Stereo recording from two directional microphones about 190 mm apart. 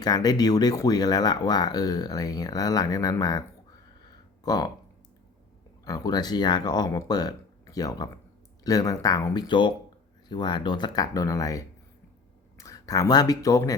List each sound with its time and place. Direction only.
0.0 s speech: 20° left (ahead or behind)
4.4 s speech: 20° left (ahead or behind)
5.8 s speech: 20° left (ahead or behind)